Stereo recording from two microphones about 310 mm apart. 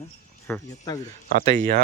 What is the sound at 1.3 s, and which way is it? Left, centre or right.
Speech, right.